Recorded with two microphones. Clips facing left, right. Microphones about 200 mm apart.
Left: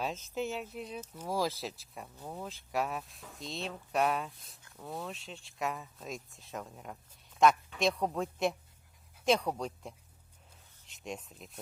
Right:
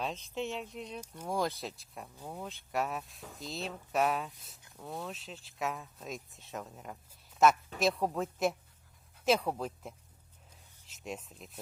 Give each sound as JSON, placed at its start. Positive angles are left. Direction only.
{"t": 0.0, "sound": "speech", "side_deg": 0}